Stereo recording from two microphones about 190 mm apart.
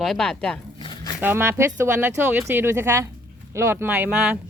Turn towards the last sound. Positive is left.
turn(degrees=-10)  # may be behind; listen again after turning